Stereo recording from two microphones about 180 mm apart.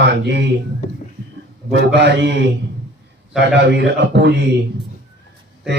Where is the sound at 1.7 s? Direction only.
70° right (ahead or behind).